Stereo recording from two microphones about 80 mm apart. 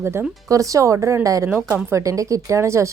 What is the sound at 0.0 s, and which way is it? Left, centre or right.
Speech, right.